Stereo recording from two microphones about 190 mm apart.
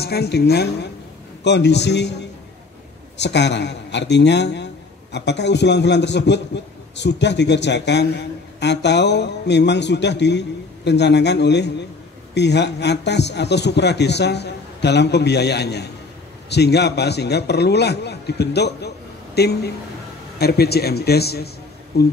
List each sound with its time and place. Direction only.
0.0 s a man's voice: 55° left (ahead or behind)